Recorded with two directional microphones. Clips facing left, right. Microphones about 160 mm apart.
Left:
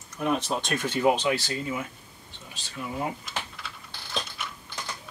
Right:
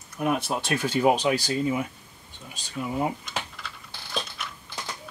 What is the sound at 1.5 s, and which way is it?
Speech, 25° right (ahead or behind).